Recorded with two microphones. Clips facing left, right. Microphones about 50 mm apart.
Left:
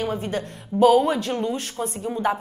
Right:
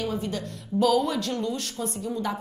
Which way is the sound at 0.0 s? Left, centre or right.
Left.